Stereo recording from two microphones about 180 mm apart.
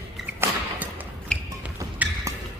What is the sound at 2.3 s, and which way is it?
Music, 15° right (ahead or behind).